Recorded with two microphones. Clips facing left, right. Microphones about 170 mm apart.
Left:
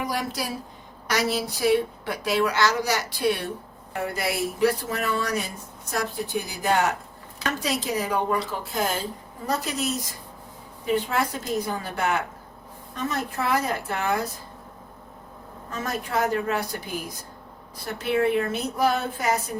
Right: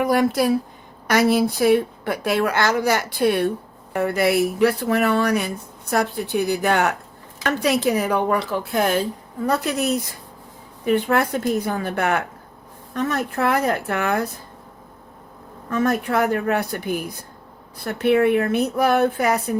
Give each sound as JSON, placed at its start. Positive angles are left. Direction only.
{"t": 0.0, "sound": "speech", "side_deg": -55}
{"t": 15.7, "sound": "speech", "side_deg": -60}